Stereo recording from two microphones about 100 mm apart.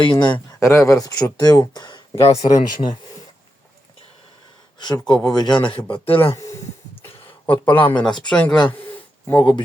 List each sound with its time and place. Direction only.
0.0 s a man's voice: 50° left (ahead or behind)
0.6 s speech: 30° left (ahead or behind); by 2.0 s 45° left (ahead or behind)
2.2 s speech: 90° left
2.6 s a man's voice: 50° left (ahead or behind)
4.8 s a man's voice: 50° left (ahead or behind)
6.3 s speech: 30° left (ahead or behind)
7.0 s a sound: 20° left (ahead or behind)
8.3 s speech: 10° left (ahead or behind)
9.4 s a man's voice: 50° left (ahead or behind)